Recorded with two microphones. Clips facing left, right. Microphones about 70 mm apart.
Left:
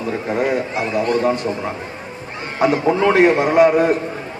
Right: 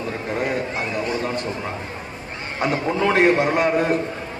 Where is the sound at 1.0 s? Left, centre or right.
Left.